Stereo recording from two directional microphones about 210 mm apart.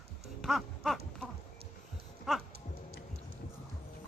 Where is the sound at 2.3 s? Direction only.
Centre (ahead or behind).